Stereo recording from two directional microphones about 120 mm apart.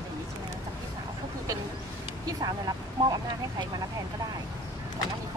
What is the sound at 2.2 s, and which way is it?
Speech, 35° right (ahead or behind).